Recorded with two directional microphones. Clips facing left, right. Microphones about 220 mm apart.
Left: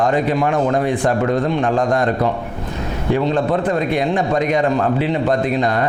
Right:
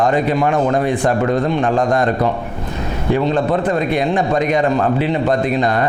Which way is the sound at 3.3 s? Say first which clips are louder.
Right 1 dB; 20° right (ahead or behind).